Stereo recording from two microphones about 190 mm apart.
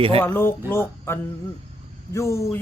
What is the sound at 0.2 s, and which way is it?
Speech, 10° left (ahead or behind).